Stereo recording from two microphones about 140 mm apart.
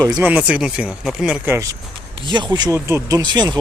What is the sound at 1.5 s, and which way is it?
Speech, 25° right (ahead or behind).